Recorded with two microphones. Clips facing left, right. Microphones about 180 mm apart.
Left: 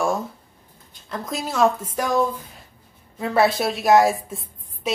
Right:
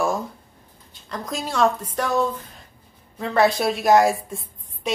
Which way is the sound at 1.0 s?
Centre (ahead or behind).